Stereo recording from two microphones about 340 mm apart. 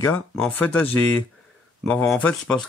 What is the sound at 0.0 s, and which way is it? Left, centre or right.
Speech, centre.